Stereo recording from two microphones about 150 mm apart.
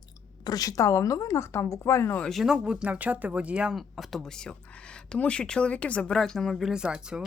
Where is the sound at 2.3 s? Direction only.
Centre (ahead or behind).